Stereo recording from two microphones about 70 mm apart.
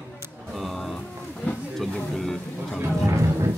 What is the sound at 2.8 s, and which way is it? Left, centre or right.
Speech, right.